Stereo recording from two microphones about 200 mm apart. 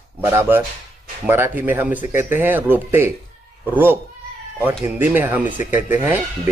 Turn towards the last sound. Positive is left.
turn(degrees=-10)  # may be behind; listen again after turning